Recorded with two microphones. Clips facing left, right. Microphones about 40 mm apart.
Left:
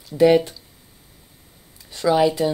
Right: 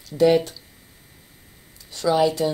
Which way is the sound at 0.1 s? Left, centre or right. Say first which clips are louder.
Left 2 dB; centre.